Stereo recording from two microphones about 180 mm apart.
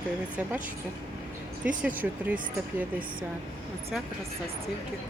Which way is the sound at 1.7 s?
10° right (ahead or behind).